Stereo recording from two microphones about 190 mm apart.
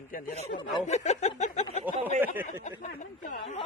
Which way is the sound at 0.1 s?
40° left (ahead or behind).